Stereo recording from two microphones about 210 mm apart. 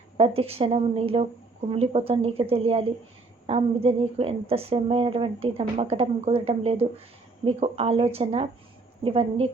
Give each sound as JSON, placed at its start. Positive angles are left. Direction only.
{"t": 0.2, "sound": "a woman's voice", "side_deg": -30}